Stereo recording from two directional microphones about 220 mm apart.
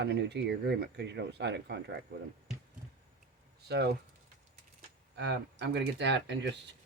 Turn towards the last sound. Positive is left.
turn(degrees=-50)  # may be behind; listen again after turning